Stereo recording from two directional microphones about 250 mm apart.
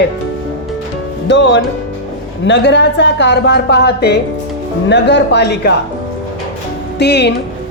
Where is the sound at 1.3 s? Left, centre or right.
Left.